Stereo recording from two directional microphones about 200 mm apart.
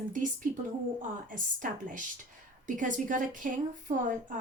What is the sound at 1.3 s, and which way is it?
Speech, 40° right (ahead or behind).